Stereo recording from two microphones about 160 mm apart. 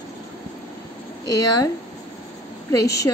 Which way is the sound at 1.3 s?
25° left (ahead or behind).